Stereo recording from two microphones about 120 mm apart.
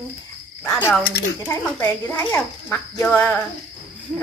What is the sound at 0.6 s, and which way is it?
Speech, 20° left (ahead or behind).